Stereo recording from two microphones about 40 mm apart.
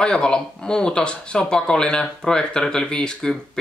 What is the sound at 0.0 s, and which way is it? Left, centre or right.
Speech, left.